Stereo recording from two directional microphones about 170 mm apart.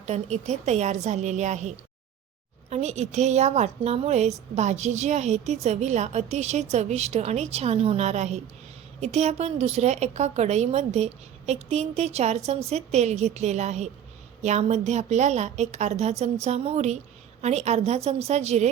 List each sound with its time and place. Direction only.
0.0 s a woman's voice: 40° right (ahead or behind)